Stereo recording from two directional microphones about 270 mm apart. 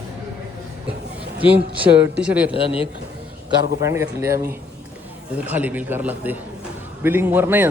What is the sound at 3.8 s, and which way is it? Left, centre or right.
A man's voice, centre.